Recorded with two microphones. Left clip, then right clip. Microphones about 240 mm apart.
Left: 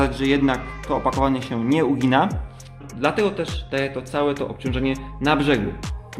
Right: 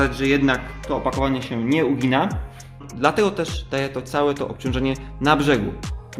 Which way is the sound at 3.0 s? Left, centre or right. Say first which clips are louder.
Right 2 dB; centre.